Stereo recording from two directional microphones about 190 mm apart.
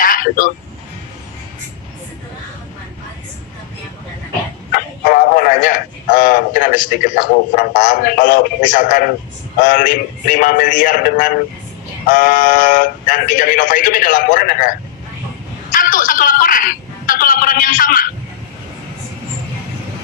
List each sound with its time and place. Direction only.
0.0 s vehicle: 50° left (ahead or behind)
4.7 s a woman's voice: 50° left (ahead or behind)